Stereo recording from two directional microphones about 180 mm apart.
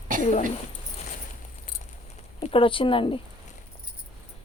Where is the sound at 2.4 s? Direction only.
30° left (ahead or behind).